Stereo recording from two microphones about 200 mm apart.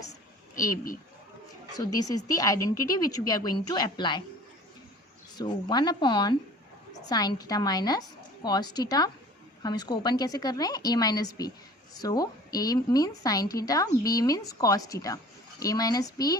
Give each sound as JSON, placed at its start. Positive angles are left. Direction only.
{"t": 2.0, "sound": "a woman's voice", "side_deg": 20}
{"t": 5.4, "sound": "a woman's voice", "side_deg": 20}